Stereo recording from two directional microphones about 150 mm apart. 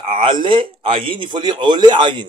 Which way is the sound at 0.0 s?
35° right (ahead or behind).